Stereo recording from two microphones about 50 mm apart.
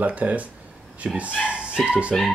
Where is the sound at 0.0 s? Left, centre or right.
Right.